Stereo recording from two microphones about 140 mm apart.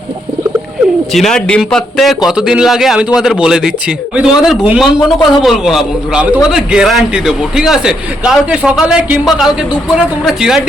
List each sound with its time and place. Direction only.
1.1 s a man's voice: 5° left (ahead or behind)